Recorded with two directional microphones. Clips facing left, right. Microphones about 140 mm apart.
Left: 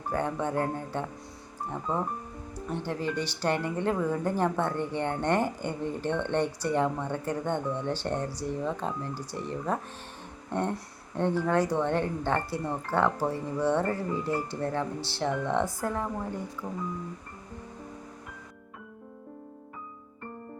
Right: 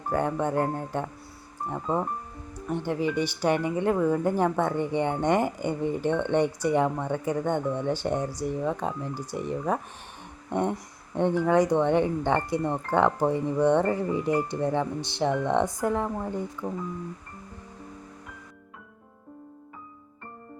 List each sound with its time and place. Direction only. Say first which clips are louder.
0.1 s speech: right 3 dB; 10° right (ahead or behind)